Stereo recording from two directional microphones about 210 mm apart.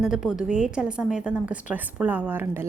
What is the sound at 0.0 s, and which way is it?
A woman's voice, 5° right (ahead or behind).